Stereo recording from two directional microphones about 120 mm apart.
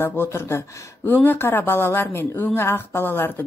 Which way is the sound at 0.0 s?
20° left (ahead or behind).